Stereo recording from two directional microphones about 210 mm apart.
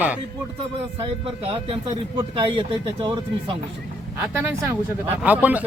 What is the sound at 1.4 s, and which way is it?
Speech, 25° right (ahead or behind).